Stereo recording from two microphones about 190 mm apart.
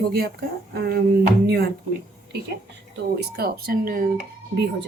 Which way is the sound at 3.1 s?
55° right (ahead or behind).